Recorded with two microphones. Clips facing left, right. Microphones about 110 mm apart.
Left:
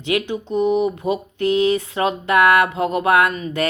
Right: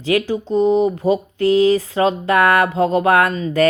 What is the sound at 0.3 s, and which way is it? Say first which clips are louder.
Speech: right 3 dB; 35° right (ahead or behind).